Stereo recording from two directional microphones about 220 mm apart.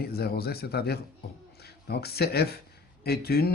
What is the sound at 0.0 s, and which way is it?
Speech, 45° left (ahead or behind).